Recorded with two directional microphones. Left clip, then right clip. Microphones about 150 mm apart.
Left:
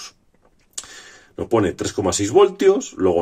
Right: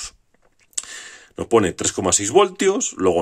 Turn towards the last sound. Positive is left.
turn(degrees=-55)  # may be behind; listen again after turning